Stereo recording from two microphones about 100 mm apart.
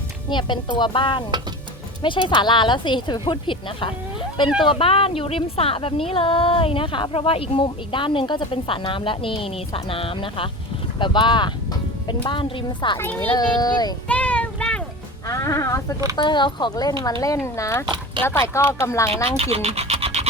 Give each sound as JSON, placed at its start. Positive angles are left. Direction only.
{"t": 0.3, "sound": "a woman's voice", "side_deg": 50}
{"t": 13.3, "sound": "speech", "side_deg": 45}
{"t": 14.1, "sound": "child singing", "side_deg": 15}
{"t": 15.3, "sound": "a woman's voice", "side_deg": 30}
{"t": 16.1, "sound": "a woman's voice", "side_deg": 50}
{"t": 17.8, "sound": "speech", "side_deg": -50}
{"t": 18.3, "sound": "speech", "side_deg": 30}
{"t": 19.4, "sound": "speech", "side_deg": -90}